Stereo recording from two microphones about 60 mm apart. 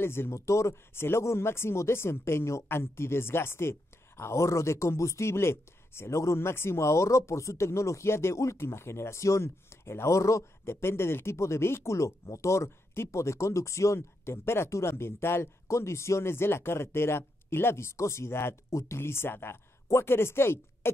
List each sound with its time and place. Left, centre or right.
0.0 s speech: left
10.6 s speech: left
18.7 s speech: left
18.9 s speech: left